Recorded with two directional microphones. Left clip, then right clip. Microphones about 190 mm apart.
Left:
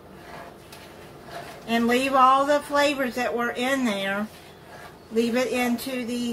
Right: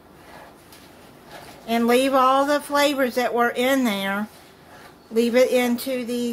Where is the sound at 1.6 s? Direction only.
50° right (ahead or behind).